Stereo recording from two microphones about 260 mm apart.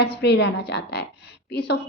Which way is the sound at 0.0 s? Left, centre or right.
Left.